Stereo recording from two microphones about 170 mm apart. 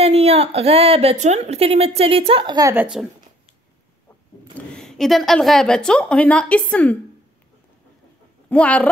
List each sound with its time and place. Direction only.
0.0 s a woman's voice: 40° right (ahead or behind)
2.7 s a woman's voice: 10° right (ahead or behind)
4.6 s a woman's voice: 5° left (ahead or behind)
8.5 s speech: 5° left (ahead or behind)